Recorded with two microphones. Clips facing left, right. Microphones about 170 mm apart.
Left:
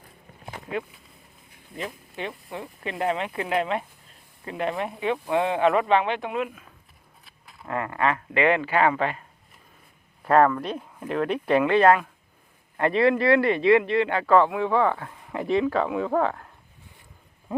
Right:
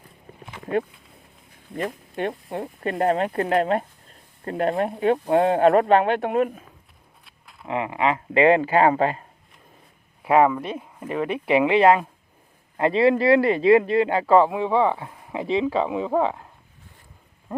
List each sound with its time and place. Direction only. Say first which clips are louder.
0.7 s speech: right 7 dB; 50° right (ahead or behind)
7.3 s a sound: right 1 dB; centre (ahead or behind)
7.7 s speech: right 2 dB; 20° right (ahead or behind)
8.4 s speech: right 5 dB; 35° right (ahead or behind)
10.2 s speech: right 1 dB; 10° right (ahead or behind)
12.7 s speech: right 2 dB; 30° right (ahead or behind)
15.0 s a sound: right 1 dB; 15° right (ahead or behind)
15.4 s speech: even; 25° right (ahead or behind)
16.1 s speech: right 2 dB; 10° right (ahead or behind)